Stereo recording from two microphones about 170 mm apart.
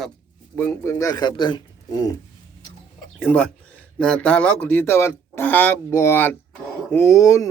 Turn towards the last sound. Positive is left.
turn(degrees=20)  # may be behind; listen again after turning